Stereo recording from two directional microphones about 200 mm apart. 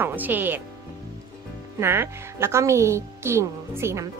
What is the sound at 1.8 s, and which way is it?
A woman's voice, 15° right (ahead or behind).